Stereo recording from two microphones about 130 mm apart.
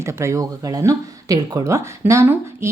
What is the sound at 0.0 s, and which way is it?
A woman's voice, 20° right (ahead or behind).